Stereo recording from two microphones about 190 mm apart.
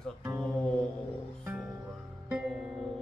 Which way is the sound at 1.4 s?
10° right (ahead or behind).